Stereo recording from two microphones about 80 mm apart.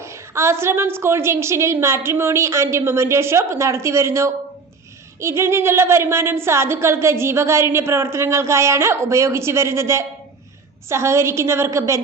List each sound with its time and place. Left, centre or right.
0.0 s speech: right